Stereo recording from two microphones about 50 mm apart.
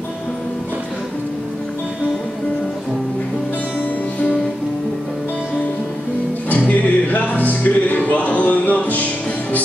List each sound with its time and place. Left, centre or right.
6.5 s music: left